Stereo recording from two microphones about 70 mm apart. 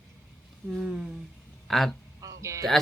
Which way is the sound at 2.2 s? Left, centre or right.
Right.